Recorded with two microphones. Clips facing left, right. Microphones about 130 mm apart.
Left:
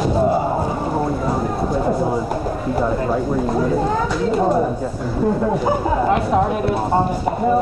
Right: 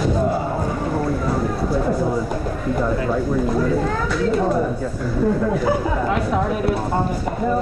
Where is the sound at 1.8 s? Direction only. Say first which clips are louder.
Left 3 dB; 30° left (ahead or behind).